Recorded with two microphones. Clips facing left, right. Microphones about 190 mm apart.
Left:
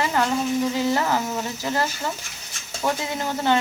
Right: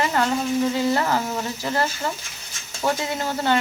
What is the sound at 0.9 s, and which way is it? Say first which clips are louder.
Speech: even; 15° left (ahead or behind).